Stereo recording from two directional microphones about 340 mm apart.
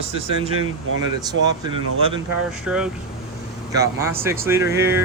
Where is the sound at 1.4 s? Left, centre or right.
Right.